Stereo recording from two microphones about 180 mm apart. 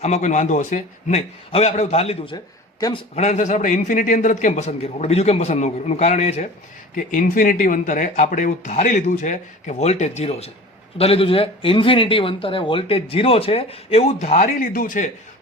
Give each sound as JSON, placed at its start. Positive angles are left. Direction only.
{"t": 0.0, "sound": "speech", "side_deg": 40}